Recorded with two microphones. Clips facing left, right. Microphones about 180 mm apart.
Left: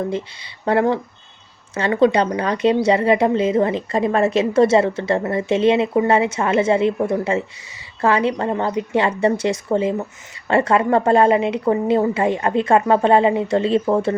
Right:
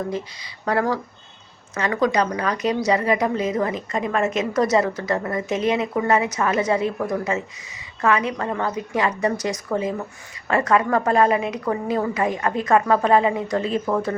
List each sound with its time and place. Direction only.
0.6 s speech: 25° left (ahead or behind)